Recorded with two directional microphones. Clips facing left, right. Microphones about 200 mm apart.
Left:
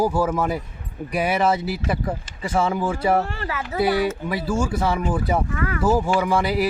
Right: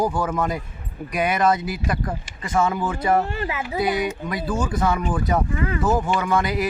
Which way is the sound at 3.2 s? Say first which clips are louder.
Right 1 dB; 15° right (ahead or behind).